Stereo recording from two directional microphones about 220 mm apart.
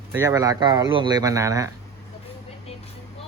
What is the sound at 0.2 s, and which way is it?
Speech, 15° right (ahead or behind).